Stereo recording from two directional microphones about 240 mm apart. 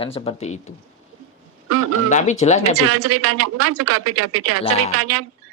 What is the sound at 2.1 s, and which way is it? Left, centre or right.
Speech, left.